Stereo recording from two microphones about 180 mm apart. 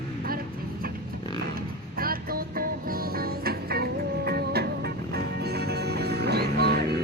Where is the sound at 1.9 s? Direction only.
55° right (ahead or behind).